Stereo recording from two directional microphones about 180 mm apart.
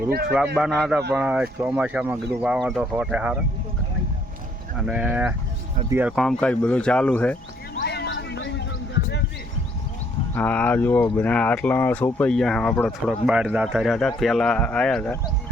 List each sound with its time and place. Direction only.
0.1 s a man's voice: 60° right (ahead or behind)
0.3 s speech: 5° right (ahead or behind)
4.8 s speech: 5° right (ahead or behind)
6.1 s speech: 5° left (ahead or behind)
7.8 s a sound: 65° left (ahead or behind)
10.3 s speech: 10° left (ahead or behind)